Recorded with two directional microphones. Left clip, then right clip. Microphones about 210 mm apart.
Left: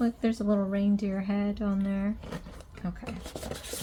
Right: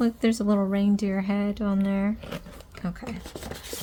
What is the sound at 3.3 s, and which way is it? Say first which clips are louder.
Filing: right 1 dB; 15° right (ahead or behind).